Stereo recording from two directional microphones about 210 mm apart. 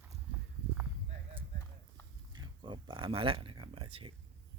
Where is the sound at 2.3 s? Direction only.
20° right (ahead or behind).